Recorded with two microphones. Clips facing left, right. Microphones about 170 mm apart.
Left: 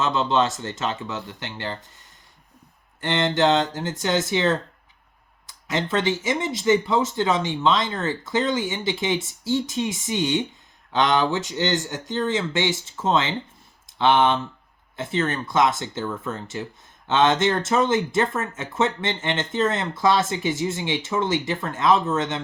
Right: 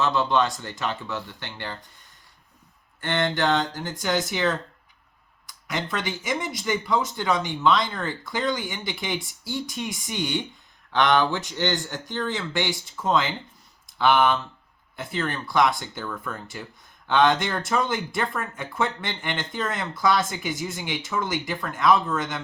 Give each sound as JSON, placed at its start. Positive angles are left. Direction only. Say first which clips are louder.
{"t": 0.0, "sound": "speech", "louder": "left 1 dB", "side_deg": 20}
{"t": 3.0, "sound": "speech", "louder": "left 4 dB", "side_deg": 20}